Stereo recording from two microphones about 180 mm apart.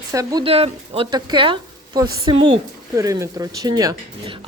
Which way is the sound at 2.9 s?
15° right (ahead or behind).